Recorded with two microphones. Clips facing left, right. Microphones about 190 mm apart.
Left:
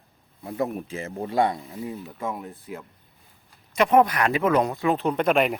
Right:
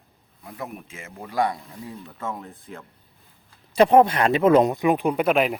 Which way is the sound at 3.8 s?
30° right (ahead or behind).